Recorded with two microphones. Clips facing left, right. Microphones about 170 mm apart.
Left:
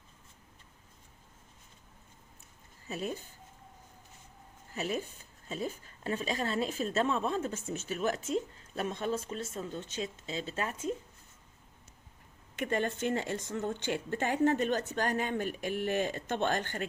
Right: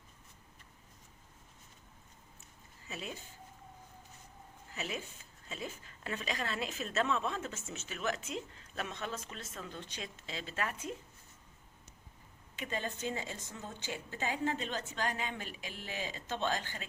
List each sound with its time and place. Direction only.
2.8 s speech: 40° left (ahead or behind)
4.7 s a woman's voice: 40° left (ahead or behind)
12.5 s a woman's voice: 60° left (ahead or behind)